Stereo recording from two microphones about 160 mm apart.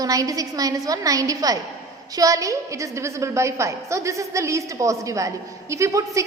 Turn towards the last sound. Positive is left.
turn(degrees=-20)  # may be behind; listen again after turning